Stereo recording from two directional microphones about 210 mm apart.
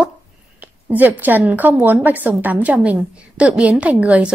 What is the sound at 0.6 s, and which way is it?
A woman's voice, 10° right (ahead or behind).